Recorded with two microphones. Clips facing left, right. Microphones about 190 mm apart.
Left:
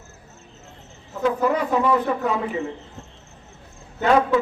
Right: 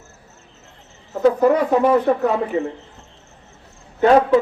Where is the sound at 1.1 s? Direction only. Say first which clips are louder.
Right 6 dB; 50° right (ahead or behind).